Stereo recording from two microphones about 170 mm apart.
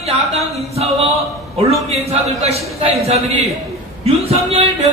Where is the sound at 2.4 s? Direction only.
40° right (ahead or behind).